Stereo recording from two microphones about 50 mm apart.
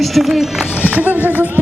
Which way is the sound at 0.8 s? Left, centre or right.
Right.